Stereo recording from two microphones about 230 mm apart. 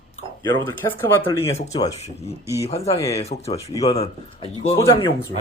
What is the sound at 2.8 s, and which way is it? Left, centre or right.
Speech, centre.